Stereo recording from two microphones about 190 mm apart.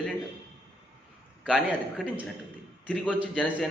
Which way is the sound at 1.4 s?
5° right (ahead or behind).